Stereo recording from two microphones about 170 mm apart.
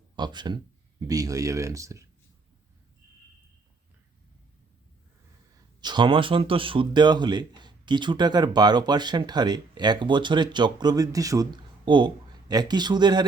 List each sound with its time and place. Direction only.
0.2 s speech: 25° right (ahead or behind)
5.8 s speech: 25° right (ahead or behind)